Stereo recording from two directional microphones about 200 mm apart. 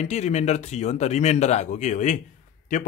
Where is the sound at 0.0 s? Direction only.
35° left (ahead or behind).